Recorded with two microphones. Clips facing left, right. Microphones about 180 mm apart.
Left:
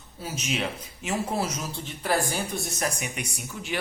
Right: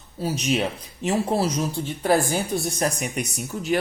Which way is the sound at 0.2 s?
35° right (ahead or behind).